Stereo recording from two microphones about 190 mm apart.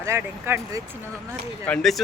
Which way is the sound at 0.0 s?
15° right (ahead or behind).